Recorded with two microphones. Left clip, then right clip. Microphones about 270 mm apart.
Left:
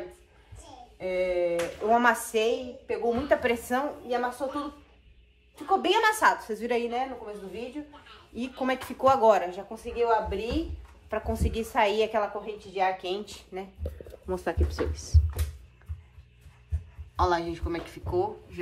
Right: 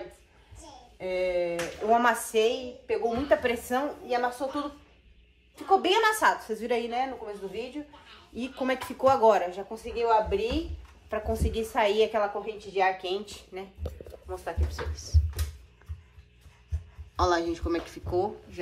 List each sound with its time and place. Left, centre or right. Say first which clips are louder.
0.9 s speech: even; centre
5.7 s speech: right 1 dB; centre
13.6 s speech: left 2 dB; centre
14.3 s speech: left 5 dB; left
17.2 s speech: even; centre